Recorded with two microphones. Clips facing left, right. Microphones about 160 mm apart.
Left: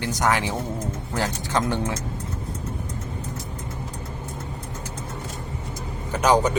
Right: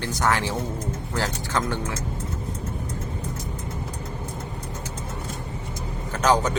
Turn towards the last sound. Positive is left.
turn(degrees=10)  # may be behind; listen again after turning